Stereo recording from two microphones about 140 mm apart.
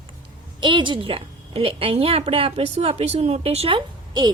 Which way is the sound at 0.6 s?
35° right (ahead or behind).